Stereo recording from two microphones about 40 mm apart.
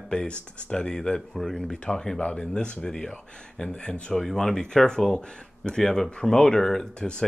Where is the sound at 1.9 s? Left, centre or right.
Left.